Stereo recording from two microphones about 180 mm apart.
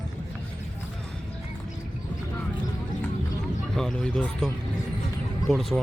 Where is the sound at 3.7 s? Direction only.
5° left (ahead or behind).